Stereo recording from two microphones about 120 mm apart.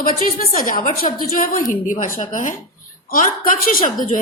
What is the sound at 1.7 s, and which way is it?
A woman's voice, 90° left.